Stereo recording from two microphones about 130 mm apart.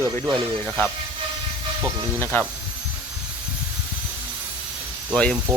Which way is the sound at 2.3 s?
15° left (ahead or behind).